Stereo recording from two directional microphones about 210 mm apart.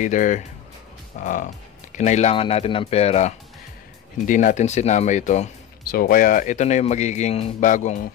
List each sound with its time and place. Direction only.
0.0 s speech: 35° left (ahead or behind)